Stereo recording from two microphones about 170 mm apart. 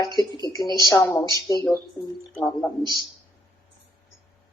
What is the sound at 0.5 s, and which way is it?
Speech, 20° left (ahead or behind).